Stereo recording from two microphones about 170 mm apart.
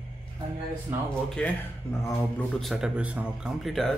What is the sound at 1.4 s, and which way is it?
Speech, 5° left (ahead or behind).